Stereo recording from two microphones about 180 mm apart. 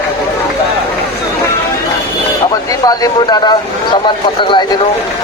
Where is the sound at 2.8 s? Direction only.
20° left (ahead or behind).